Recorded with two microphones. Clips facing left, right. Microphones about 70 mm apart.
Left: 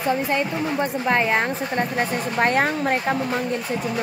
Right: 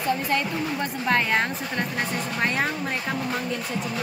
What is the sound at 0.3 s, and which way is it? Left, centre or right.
Speech, centre.